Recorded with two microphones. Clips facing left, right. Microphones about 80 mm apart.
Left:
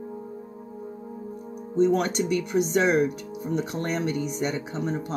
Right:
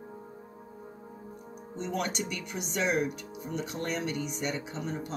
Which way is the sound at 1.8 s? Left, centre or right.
Left.